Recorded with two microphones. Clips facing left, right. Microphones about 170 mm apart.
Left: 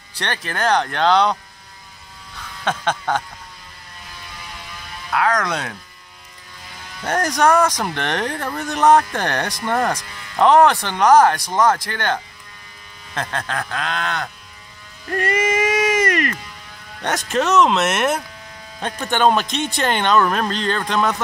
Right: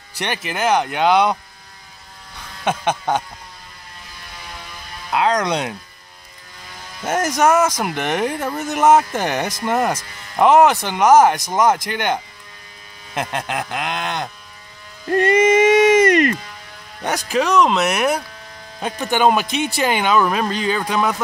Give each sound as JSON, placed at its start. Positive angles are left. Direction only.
{"t": 0.2, "sound": "speech", "side_deg": -10}
{"t": 2.6, "sound": "speech", "side_deg": -15}
{"t": 5.1, "sound": "speech", "side_deg": -20}
{"t": 7.0, "sound": "speech", "side_deg": -5}
{"t": 15.0, "sound": "music", "side_deg": -25}
{"t": 17.0, "sound": "speech", "side_deg": 0}